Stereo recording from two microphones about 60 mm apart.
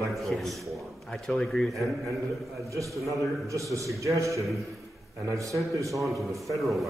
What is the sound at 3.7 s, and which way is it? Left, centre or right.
A man's voice, right.